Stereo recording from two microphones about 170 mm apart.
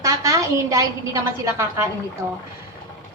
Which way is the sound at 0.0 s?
20° right (ahead or behind).